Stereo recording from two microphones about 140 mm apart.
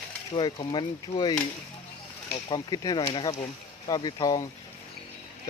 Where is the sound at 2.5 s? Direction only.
30° left (ahead or behind).